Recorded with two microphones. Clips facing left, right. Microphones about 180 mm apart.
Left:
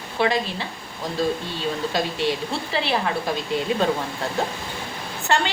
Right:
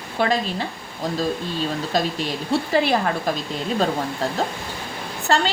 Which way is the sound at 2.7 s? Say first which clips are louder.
Right 3 dB; 45° right (ahead or behind).